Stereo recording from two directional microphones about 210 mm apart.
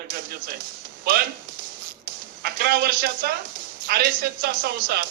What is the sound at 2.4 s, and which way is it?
A man's voice, 45° right (ahead or behind).